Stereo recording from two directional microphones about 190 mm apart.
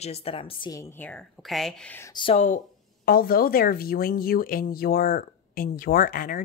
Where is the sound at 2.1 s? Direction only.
25° left (ahead or behind).